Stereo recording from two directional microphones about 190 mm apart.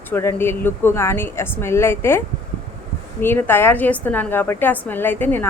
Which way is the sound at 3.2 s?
10° left (ahead or behind).